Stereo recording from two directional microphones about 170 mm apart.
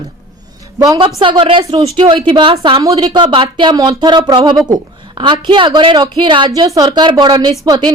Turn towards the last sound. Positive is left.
turn(degrees=-25)  # may be behind; listen again after turning